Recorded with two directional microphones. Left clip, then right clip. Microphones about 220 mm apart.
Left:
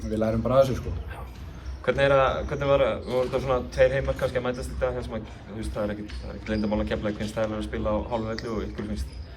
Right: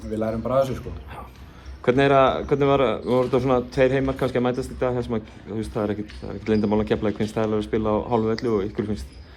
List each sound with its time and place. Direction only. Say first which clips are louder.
0.1 s a man's voice: right 1 dB; 5° right (ahead or behind)
1.8 s a man's voice: right 4 dB; 25° right (ahead or behind)